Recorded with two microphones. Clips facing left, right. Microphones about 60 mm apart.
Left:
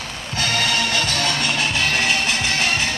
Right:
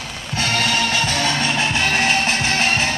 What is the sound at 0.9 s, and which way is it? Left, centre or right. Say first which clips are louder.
Music: right 2 dB; right.